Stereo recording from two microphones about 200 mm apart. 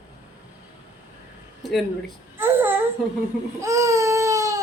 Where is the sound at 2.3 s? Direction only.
10° right (ahead or behind).